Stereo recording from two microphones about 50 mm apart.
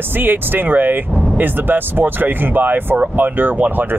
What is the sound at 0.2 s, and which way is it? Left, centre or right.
Speech, right.